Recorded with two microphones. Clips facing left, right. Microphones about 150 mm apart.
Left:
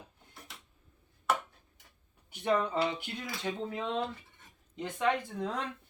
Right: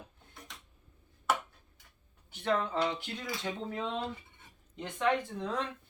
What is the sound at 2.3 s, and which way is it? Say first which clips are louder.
Speech: left 2 dB; 15° left (ahead or behind).